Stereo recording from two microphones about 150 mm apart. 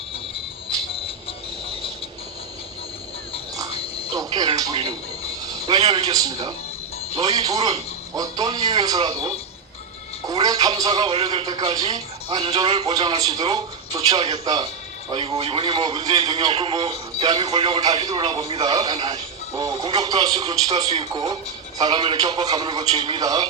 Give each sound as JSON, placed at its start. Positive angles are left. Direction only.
{"t": 3.8, "sound": "a sound", "side_deg": 40}
{"t": 4.1, "sound": "a sound", "side_deg": -30}
{"t": 4.7, "sound": "a man's voice", "side_deg": -35}
{"t": 12.9, "sound": "a man's voice", "side_deg": -25}
{"t": 14.2, "sound": "a man's voice", "side_deg": -40}
{"t": 16.6, "sound": "a man's voice", "side_deg": -40}